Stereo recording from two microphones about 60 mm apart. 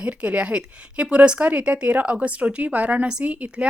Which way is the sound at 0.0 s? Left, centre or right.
Right.